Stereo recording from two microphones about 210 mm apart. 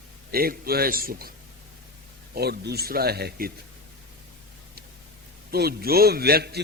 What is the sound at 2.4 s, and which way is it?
A man's voice, 50° right (ahead or behind).